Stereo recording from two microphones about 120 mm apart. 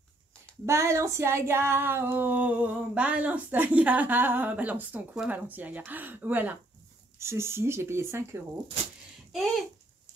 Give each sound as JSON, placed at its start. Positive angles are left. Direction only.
{"t": 0.7, "sound": "female singing", "side_deg": -25}
{"t": 7.2, "sound": "speech", "side_deg": -20}
{"t": 9.3, "sound": "a sound", "side_deg": 0}